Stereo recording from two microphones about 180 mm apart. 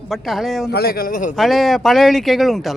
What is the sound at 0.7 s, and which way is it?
Speech, 60° left (ahead or behind).